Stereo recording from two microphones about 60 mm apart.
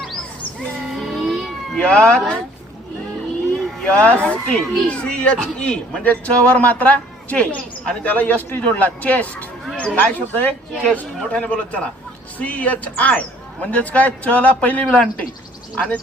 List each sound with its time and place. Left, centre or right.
0.9 s music: centre
1.7 s speech: left
3.8 s speech: left